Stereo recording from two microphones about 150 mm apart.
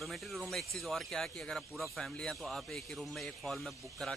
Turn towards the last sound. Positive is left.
turn(degrees=0)  # may be behind; listen again after turning